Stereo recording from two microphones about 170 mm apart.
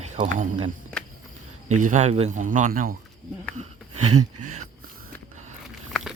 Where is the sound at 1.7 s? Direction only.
45° right (ahead or behind).